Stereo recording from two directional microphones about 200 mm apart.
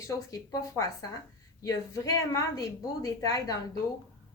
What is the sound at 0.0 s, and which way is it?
A woman's voice, 15° left (ahead or behind).